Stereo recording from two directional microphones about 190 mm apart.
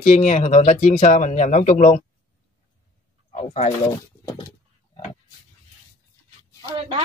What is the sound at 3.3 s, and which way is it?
Speech, 35° left (ahead or behind).